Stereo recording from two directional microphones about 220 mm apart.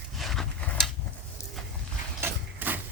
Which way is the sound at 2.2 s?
10° right (ahead or behind).